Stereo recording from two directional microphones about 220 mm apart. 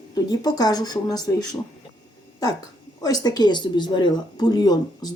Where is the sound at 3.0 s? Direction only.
15° left (ahead or behind).